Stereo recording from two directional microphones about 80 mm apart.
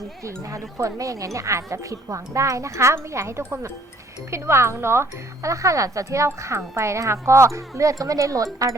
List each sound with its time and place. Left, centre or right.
0.2 s speech: right